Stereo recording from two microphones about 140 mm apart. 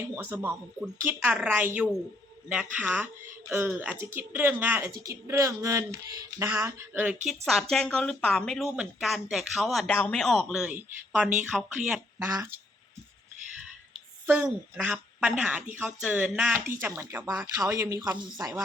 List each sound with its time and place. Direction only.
0.1 s speech: 15° right (ahead or behind)
7.3 s speech: centre (ahead or behind)
10.6 s speech: 10° right (ahead or behind)
12.3 s speech: 20° right (ahead or behind)
14.3 s speech: 15° right (ahead or behind)